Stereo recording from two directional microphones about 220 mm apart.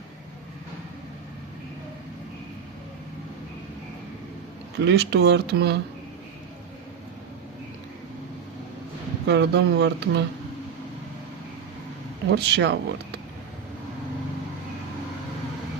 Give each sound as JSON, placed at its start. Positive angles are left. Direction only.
{"t": 4.8, "sound": "speech", "side_deg": -50}
{"t": 9.2, "sound": "speech", "side_deg": -50}
{"t": 12.3, "sound": "speech", "side_deg": -50}